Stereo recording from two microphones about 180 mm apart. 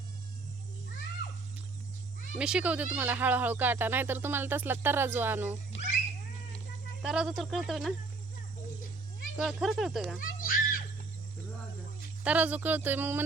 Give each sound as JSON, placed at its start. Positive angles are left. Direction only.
{"t": 2.4, "sound": "speech", "side_deg": -5}
{"t": 7.0, "sound": "speech", "side_deg": -5}
{"t": 9.4, "sound": "speech", "side_deg": 0}
{"t": 10.2, "sound": "a sound", "side_deg": 50}
{"t": 12.2, "sound": "speech", "side_deg": -10}